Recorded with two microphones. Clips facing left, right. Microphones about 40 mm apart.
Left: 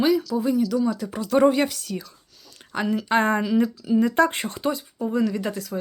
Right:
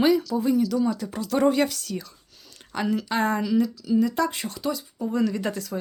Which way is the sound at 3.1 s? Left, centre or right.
Left.